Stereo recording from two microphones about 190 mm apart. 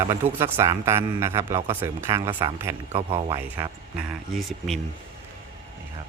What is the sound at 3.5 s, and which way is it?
Speech, 10° right (ahead or behind).